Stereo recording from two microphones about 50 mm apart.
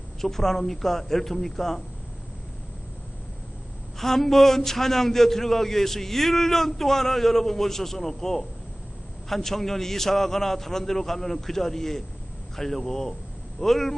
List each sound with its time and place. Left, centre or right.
0.2 s a man's voice: centre
3.9 s a man's voice: centre